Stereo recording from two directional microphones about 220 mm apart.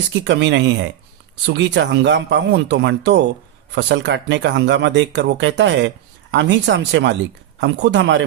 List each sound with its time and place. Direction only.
0.3 s speech: 50° right (ahead or behind)